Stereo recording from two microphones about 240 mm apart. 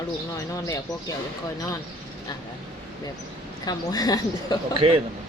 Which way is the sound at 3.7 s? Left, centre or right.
Centre.